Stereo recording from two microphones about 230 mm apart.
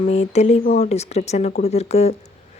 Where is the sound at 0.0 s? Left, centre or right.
Left.